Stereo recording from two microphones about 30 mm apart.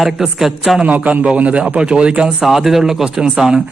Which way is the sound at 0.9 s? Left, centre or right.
Right.